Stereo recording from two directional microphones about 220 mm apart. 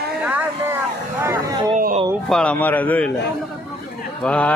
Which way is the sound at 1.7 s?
35° right (ahead or behind).